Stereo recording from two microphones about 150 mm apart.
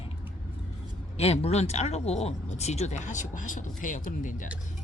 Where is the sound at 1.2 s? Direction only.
45° left (ahead or behind); by 4.4 s 60° left (ahead or behind).